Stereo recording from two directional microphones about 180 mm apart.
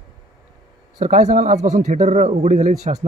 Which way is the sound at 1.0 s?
40° right (ahead or behind).